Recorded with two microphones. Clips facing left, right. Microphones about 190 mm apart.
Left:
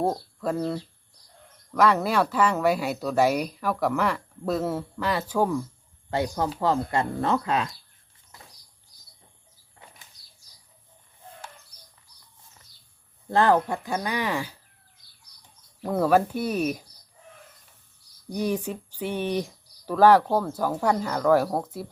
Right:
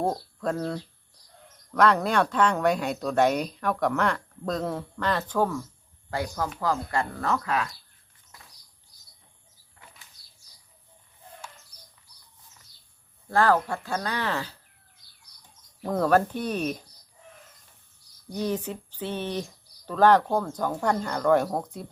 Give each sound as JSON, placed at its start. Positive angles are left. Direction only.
{"t": 0.0, "sound": "speech", "side_deg": 0}
{"t": 6.1, "sound": "speech", "side_deg": 25}
{"t": 13.3, "sound": "speech", "side_deg": 20}
{"t": 15.8, "sound": "speech", "side_deg": 10}
{"t": 18.3, "sound": "speech", "side_deg": 15}